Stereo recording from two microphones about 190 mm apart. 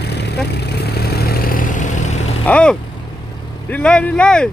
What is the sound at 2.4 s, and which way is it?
Vehicle, 5° left (ahead or behind).